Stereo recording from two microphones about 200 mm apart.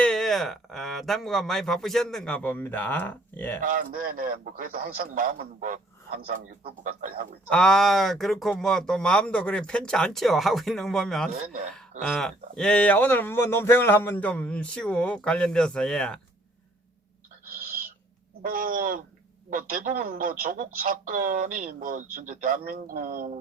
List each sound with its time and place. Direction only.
0.0 s speech: 5° left (ahead or behind)
3.6 s speech: 40° right (ahead or behind)
7.5 s speech: 5° left (ahead or behind)
11.3 s speech: 45° right (ahead or behind)
11.7 s speech: 5° left (ahead or behind)
18.4 s speech: 45° right (ahead or behind)